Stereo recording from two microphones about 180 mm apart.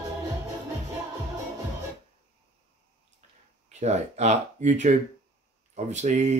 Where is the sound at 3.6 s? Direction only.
40° right (ahead or behind).